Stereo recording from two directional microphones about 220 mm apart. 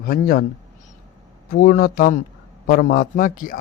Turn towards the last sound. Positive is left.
turn(degrees=40)  # may be behind; listen again after turning